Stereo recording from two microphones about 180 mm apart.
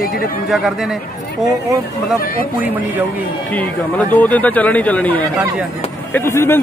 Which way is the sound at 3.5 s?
10° left (ahead or behind).